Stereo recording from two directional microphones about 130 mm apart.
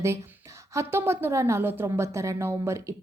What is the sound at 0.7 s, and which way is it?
A woman's voice, 20° right (ahead or behind).